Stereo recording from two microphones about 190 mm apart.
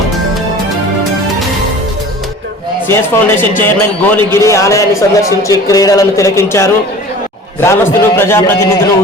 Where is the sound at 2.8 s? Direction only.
10° left (ahead or behind).